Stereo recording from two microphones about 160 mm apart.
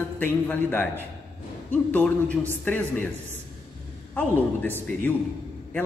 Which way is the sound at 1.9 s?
10° left (ahead or behind).